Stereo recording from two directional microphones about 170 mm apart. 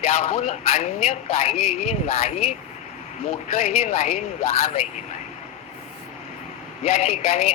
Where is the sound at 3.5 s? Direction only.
40° left (ahead or behind).